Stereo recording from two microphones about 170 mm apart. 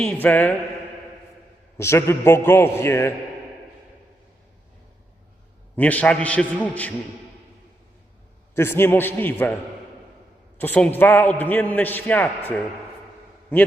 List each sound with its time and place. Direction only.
0.0 s a man's voice: 10° left (ahead or behind)
1.8 s a man's voice: 15° left (ahead or behind)
5.7 s a man's voice: 10° left (ahead or behind)
8.5 s a man's voice: 15° left (ahead or behind)
10.6 s a man's voice: 10° left (ahead or behind)